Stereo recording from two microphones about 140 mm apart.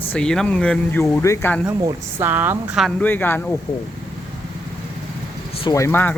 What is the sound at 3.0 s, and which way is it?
Speech, 15° left (ahead or behind).